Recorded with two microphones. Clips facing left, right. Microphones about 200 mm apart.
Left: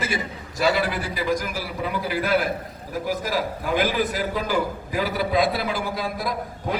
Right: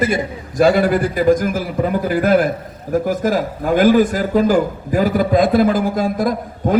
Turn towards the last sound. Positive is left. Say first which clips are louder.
# right 9 dB
turn(degrees=-50)  # may be behind; listen again after turning